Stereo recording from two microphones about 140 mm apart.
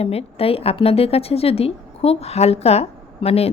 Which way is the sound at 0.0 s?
45° left (ahead or behind).